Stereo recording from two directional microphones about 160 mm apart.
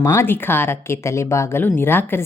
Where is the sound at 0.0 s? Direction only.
15° left (ahead or behind).